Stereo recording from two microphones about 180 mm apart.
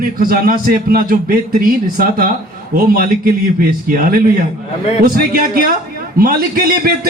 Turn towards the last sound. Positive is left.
turn(degrees=-55)  # may be behind; listen again after turning